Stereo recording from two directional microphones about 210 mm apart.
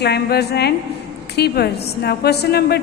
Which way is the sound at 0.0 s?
50° left (ahead or behind).